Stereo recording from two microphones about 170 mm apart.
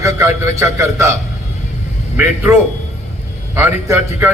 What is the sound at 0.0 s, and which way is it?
A man's voice, 15° right (ahead or behind).